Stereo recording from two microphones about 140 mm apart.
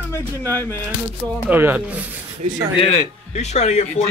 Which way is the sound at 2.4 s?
45° right (ahead or behind).